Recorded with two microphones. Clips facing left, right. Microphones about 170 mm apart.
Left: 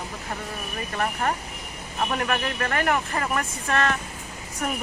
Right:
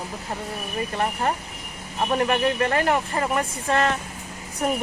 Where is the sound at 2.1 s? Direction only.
25° right (ahead or behind).